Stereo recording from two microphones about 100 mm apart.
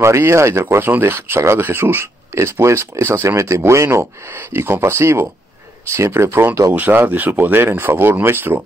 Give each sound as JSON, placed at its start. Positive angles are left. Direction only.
{"t": 0.0, "sound": "speech", "side_deg": -25}